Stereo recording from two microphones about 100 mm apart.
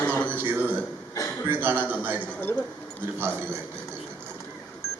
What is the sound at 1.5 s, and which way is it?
Speech, 20° right (ahead or behind).